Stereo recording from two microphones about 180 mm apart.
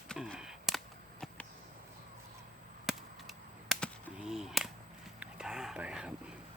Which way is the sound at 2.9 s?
Centre (ahead or behind).